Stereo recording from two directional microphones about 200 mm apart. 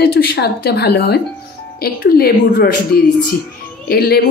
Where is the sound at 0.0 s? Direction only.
55° left (ahead or behind).